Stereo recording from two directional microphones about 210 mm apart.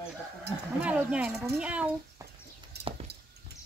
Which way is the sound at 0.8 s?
5° right (ahead or behind).